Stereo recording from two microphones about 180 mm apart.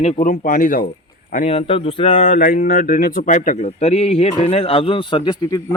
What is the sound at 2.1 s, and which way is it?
A man's voice, 45° left (ahead or behind).